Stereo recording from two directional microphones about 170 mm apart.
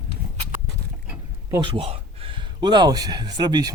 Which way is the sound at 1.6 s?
30° right (ahead or behind).